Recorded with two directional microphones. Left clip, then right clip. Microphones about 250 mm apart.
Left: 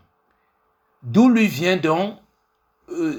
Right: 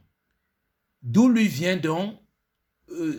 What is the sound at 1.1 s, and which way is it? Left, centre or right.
Speech, right.